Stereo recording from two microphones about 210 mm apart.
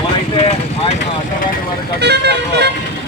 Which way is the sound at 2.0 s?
50° right (ahead or behind).